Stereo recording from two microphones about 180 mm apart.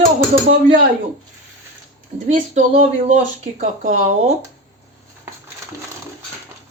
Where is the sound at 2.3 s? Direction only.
45° right (ahead or behind).